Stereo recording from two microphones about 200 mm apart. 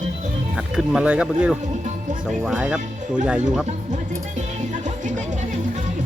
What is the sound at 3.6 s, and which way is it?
Music, 35° right (ahead or behind).